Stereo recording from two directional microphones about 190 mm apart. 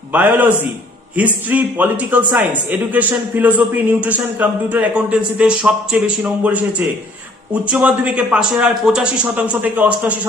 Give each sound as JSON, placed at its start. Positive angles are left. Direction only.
{"t": 0.1, "sound": "speech", "side_deg": -10}